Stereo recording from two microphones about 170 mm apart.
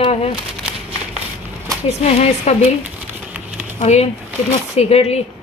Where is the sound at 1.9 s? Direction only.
40° left (ahead or behind).